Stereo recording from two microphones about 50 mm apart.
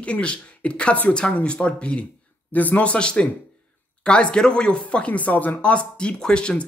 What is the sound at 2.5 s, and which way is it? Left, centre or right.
Speech, left.